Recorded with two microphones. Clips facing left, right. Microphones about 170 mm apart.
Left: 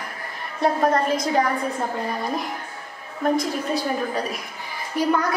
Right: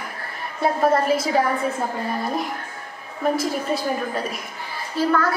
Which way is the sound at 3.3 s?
5° right (ahead or behind).